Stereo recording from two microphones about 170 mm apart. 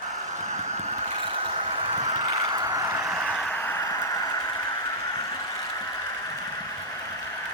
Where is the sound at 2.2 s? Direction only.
25° right (ahead or behind).